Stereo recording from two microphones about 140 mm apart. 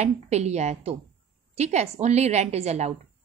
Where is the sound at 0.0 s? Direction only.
50° right (ahead or behind).